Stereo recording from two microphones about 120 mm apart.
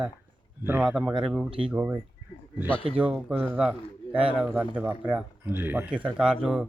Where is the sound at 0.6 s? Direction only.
15° right (ahead or behind).